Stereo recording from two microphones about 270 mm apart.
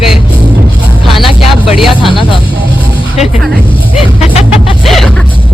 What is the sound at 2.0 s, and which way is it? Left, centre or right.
Music, centre.